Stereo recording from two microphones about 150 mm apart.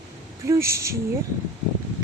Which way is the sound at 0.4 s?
20° right (ahead or behind).